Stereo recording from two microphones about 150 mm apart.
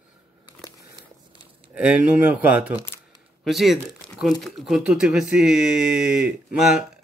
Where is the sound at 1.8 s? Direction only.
10° right (ahead or behind).